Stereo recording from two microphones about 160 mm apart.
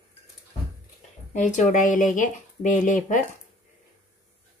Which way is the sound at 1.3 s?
50° left (ahead or behind).